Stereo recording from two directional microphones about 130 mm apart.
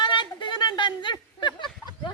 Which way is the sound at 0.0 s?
40° left (ahead or behind).